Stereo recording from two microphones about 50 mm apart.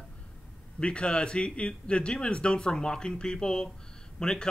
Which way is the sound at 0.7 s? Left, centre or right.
Left.